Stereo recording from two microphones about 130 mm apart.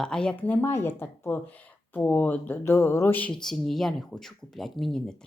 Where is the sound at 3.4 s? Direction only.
Centre (ahead or behind).